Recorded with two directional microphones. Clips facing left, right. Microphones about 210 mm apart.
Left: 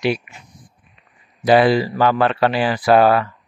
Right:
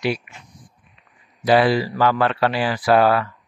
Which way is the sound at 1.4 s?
20° left (ahead or behind).